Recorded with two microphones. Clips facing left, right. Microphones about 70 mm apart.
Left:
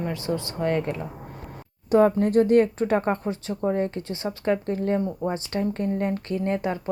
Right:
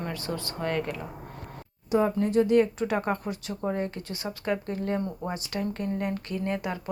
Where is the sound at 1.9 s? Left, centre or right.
Left.